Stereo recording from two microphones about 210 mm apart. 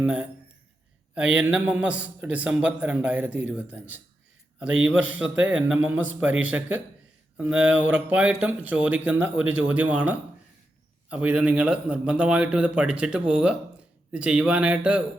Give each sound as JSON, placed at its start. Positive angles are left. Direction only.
{"t": 0.0, "sound": "a man's voice", "side_deg": -5}
{"t": 4.9, "sound": "speech", "side_deg": -65}
{"t": 5.7, "sound": "a man's voice", "side_deg": -5}